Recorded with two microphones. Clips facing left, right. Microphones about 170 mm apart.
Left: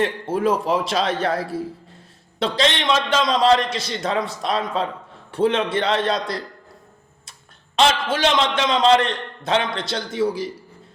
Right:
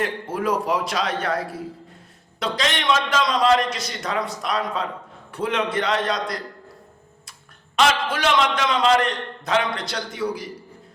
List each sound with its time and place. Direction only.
0.0 s a man's voice: 25° left (ahead or behind)
7.8 s a man's voice: 25° left (ahead or behind)